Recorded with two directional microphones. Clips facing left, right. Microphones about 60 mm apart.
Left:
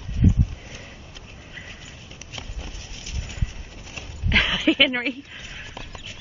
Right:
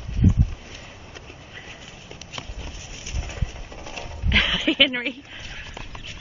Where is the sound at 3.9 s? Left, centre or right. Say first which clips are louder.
Left 1 dB; centre.